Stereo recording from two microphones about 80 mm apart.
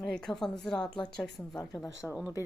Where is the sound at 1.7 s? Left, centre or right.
Centre.